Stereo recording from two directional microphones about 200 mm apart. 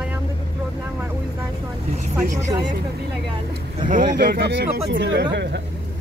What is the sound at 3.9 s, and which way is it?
Speech, 45° right (ahead or behind).